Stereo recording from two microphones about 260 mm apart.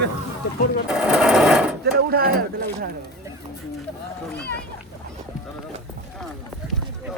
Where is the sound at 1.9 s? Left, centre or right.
Right.